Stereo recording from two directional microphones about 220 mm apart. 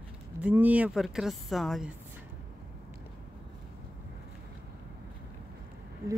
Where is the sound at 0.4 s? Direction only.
5° right (ahead or behind).